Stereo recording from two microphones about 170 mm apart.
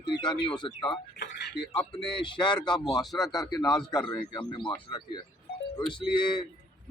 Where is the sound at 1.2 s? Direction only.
75° left (ahead or behind).